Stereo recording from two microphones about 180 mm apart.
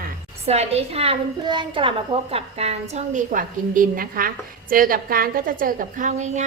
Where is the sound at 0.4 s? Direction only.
35° right (ahead or behind).